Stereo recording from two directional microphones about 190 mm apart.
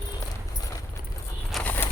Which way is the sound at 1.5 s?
10° left (ahead or behind).